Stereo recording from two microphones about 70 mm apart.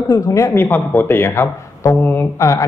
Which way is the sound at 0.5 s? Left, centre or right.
Left.